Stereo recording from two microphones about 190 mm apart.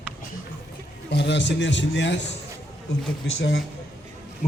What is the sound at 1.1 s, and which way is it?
A man's voice, 65° left (ahead or behind).